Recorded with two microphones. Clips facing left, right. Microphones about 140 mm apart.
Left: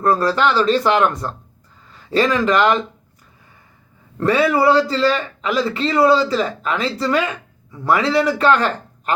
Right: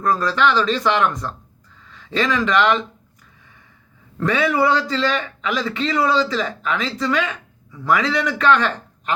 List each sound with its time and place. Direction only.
0.2 s speech: 35° left (ahead or behind)
4.2 s speech: 35° left (ahead or behind)